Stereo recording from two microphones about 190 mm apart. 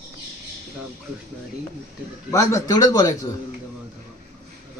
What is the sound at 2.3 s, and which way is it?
Speech, 15° left (ahead or behind).